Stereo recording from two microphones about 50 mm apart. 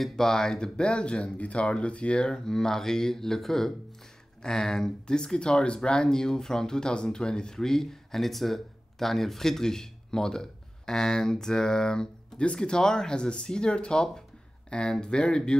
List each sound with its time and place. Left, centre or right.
0.0 s speech: centre